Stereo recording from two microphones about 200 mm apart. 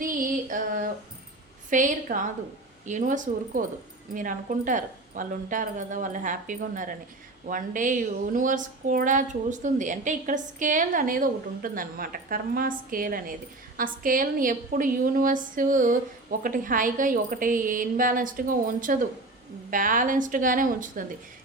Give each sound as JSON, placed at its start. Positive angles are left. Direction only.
{"t": 0.0, "sound": "female singing", "side_deg": -45}
{"t": 1.7, "sound": "a woman's voice", "side_deg": -40}